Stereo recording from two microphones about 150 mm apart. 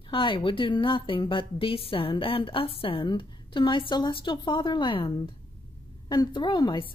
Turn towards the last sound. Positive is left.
turn(degrees=30)  # may be behind; listen again after turning